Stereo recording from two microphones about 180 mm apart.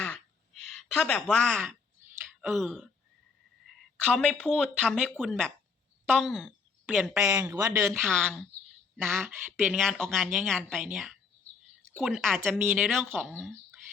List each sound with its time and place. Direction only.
0.8 s speech: 5° left (ahead or behind)
3.6 s a sound: centre (ahead or behind)
4.1 s a woman's voice: 5° left (ahead or behind); by 7.9 s 15° right (ahead or behind)
8.0 s a man's voice: 5° left (ahead or behind)
9.8 s speech: centre (ahead or behind)